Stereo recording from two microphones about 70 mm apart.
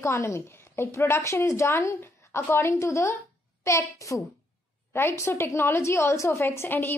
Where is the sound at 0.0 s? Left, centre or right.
Left.